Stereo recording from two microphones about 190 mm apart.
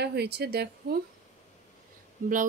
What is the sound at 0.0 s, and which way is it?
Speech, 60° right (ahead or behind).